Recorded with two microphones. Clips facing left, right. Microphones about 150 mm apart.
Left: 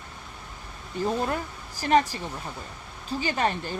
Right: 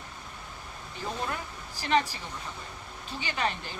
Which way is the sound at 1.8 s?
40° left (ahead or behind).